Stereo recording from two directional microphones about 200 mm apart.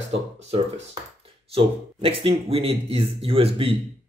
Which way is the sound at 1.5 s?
30° right (ahead or behind).